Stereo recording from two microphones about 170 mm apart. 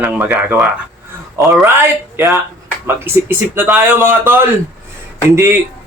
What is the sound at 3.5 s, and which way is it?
Speech, 10° right (ahead or behind).